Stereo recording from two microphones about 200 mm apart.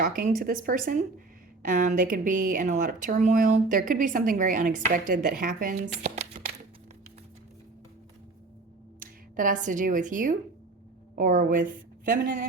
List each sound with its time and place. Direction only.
0.0 s speech: 40° right (ahead or behind)
9.0 s a woman's voice: 40° right (ahead or behind)